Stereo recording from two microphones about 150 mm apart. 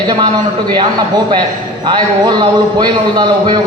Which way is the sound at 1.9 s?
30° right (ahead or behind).